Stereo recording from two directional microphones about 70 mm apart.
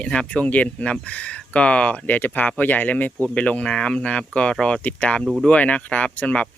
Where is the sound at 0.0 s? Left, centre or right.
Centre.